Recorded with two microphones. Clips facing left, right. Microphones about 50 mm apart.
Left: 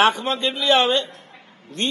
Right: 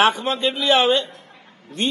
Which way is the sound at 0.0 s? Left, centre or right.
Centre.